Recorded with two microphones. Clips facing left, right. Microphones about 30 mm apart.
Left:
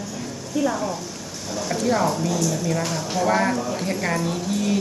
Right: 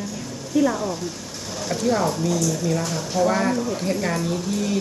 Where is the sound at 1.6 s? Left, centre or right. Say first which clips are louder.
Even; centre.